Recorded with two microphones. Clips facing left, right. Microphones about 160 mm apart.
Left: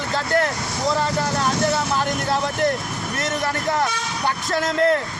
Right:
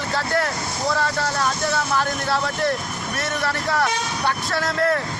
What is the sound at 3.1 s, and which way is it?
Speech, 20° left (ahead or behind).